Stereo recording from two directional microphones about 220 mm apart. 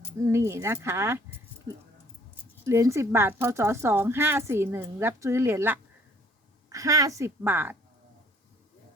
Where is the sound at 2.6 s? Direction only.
15° right (ahead or behind).